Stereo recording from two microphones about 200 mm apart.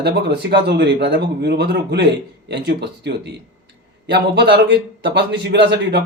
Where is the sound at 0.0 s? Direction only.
55° right (ahead or behind).